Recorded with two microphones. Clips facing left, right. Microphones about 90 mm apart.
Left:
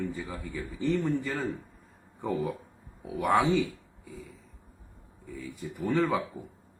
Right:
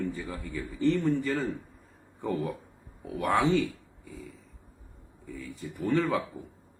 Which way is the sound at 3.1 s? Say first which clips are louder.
Left 1 dB; 5° left (ahead or behind).